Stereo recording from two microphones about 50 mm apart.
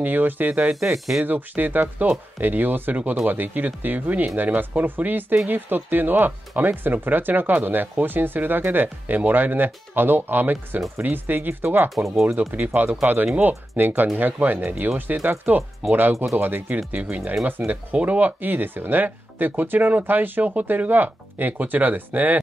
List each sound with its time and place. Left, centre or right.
0.0 s speech: right
0.9 s speech: centre
1.2 s speech: right